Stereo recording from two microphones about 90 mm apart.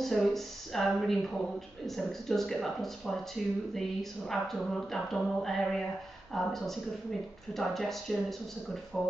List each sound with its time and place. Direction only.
0.0 s music: 5° left (ahead or behind)
8.9 s speech: 10° left (ahead or behind)